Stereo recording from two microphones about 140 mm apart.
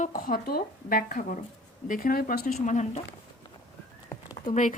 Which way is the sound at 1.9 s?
90° left.